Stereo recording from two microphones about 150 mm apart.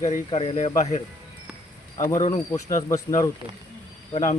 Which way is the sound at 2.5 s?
20° left (ahead or behind).